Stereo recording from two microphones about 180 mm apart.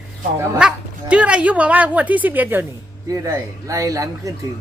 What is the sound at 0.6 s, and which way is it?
Speech, 5° right (ahead or behind).